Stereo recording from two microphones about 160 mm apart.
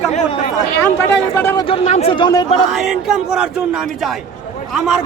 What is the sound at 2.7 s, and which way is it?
A man's voice, 5° right (ahead or behind).